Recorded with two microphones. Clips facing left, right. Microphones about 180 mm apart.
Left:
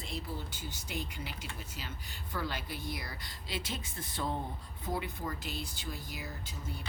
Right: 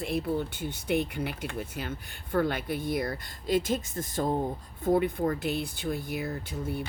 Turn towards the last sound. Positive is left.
turn(degrees=-60)  # may be behind; listen again after turning